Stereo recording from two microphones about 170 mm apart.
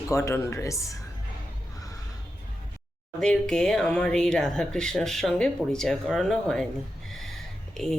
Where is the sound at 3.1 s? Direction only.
5° left (ahead or behind).